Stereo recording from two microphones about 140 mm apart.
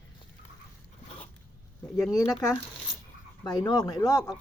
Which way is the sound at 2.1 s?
25° left (ahead or behind).